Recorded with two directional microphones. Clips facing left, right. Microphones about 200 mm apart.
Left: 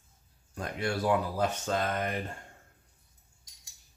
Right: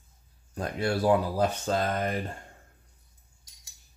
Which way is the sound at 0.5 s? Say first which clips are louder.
Right 4 dB; 35° right (ahead or behind).